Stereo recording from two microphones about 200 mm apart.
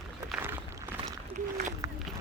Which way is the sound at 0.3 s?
10° right (ahead or behind).